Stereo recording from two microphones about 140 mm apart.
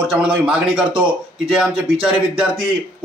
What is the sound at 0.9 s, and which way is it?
Speech, 40° right (ahead or behind).